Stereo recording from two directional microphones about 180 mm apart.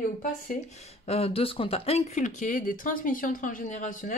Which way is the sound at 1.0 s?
35° left (ahead or behind).